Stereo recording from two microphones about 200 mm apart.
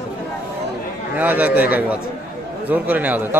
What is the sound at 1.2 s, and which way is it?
A man's voice, 10° right (ahead or behind).